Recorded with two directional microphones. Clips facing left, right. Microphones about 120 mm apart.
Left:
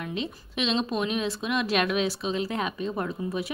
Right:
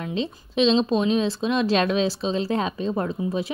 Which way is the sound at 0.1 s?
25° right (ahead or behind).